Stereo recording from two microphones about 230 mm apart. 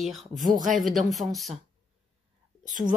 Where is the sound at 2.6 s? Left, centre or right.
Right.